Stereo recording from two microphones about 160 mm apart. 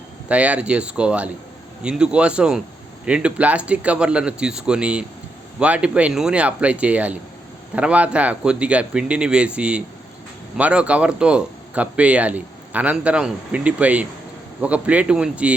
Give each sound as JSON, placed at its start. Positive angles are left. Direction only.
{"t": 0.3, "sound": "speech", "side_deg": -10}